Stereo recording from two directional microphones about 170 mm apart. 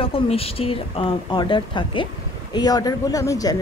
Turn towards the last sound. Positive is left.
turn(degrees=20)  # may be behind; listen again after turning